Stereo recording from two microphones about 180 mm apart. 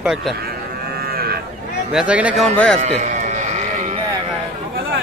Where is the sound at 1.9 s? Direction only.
5° right (ahead or behind).